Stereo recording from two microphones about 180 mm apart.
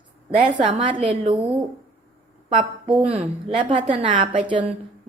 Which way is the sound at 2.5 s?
30° right (ahead or behind).